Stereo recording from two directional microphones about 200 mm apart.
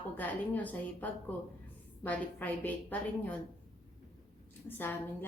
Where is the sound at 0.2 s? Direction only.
10° left (ahead or behind).